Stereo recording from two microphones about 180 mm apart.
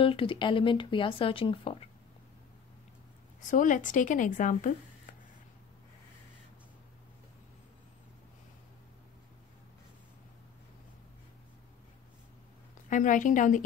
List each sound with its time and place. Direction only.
0.0 s speech: 30° left (ahead or behind)
3.4 s a woman's voice: 45° left (ahead or behind)
12.9 s a woman's voice: 45° left (ahead or behind)